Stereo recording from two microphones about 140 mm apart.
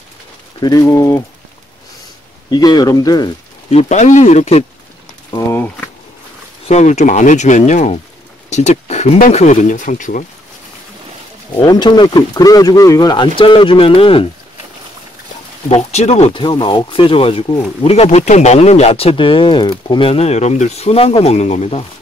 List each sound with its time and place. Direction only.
0.6 s speech: 25° left (ahead or behind)
2.5 s speech: 30° left (ahead or behind)
3.7 s speech: 60° left (ahead or behind)
6.7 s speech: 55° left (ahead or behind)
8.5 s a sound: 55° left (ahead or behind)
9.3 s speech: 55° left (ahead or behind)
11.6 s speech: 30° left (ahead or behind)
15.7 s speech: 50° left (ahead or behind)
16.4 s speech: 35° left (ahead or behind); by 21.8 s 50° left (ahead or behind)